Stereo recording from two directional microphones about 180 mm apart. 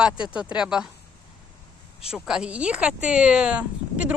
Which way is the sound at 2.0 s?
5° right (ahead or behind).